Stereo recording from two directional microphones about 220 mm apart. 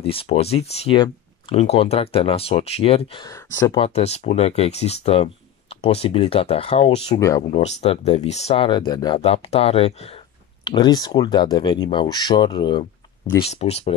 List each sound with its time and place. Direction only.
0.0 s speech: 25° left (ahead or behind)
7.2 s speech: 15° left (ahead or behind)
7.5 s speech: 30° left (ahead or behind)